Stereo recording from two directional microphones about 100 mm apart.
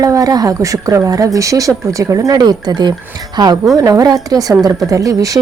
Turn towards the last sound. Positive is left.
turn(degrees=-35)  # may be behind; listen again after turning